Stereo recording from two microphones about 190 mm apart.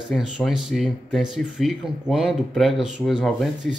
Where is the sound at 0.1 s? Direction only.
Centre (ahead or behind).